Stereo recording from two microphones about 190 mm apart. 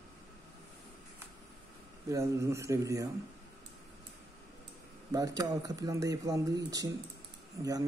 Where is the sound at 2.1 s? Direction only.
15° right (ahead or behind).